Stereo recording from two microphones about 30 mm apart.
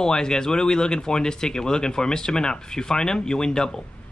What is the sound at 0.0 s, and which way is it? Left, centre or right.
Speech, left.